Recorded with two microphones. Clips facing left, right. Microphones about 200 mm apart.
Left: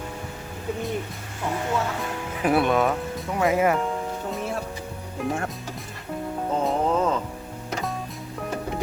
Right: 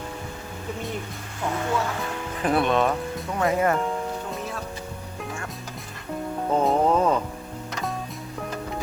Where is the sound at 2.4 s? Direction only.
5° left (ahead or behind).